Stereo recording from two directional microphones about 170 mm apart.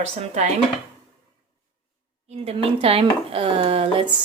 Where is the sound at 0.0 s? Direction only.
40° right (ahead or behind).